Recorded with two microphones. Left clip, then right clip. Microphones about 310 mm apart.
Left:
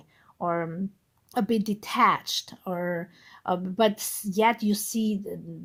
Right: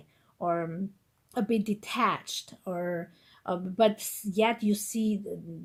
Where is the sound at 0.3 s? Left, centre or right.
Left.